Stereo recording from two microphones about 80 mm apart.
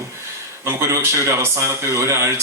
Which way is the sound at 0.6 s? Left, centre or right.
Right.